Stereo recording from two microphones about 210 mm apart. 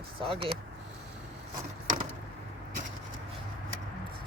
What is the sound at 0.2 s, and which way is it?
Speech, 25° right (ahead or behind).